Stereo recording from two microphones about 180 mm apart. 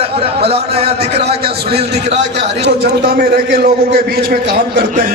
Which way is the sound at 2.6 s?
65° right (ahead or behind).